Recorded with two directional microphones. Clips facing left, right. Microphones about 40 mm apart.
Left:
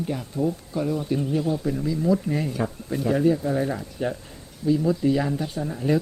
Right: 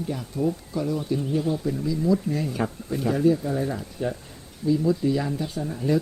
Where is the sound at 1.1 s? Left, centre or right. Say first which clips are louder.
Even; left.